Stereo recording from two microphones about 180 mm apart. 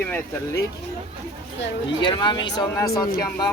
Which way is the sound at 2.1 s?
25° left (ahead or behind).